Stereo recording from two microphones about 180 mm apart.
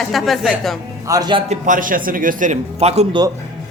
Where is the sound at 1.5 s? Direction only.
45° right (ahead or behind).